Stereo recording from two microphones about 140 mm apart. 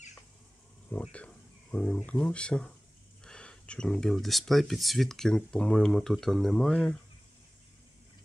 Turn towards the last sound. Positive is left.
turn(degrees=5)  # may be behind; listen again after turning